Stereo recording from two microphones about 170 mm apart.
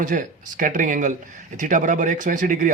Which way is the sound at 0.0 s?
50° right (ahead or behind).